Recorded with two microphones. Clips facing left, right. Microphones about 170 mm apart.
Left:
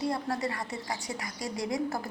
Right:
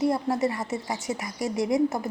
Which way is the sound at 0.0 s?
25° right (ahead or behind).